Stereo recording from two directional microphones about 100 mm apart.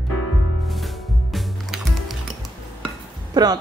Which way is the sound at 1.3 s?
Centre (ahead or behind).